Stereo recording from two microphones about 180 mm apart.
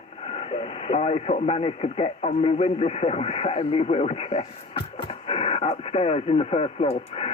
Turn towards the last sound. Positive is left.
turn(degrees=35)  # may be behind; listen again after turning